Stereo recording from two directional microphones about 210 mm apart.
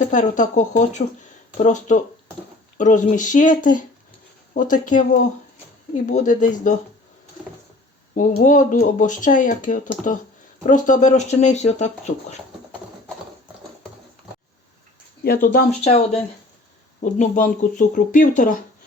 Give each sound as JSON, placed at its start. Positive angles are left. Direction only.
{"t": 0.0, "sound": "speech", "side_deg": 35}
{"t": 8.4, "sound": "speech", "side_deg": 35}
{"t": 15.2, "sound": "speech", "side_deg": 45}